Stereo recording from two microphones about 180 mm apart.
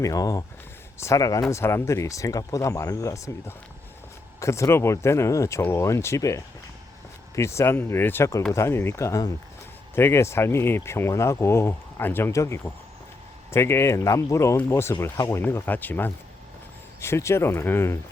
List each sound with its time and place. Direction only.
0.0 s speech: 20° left (ahead or behind)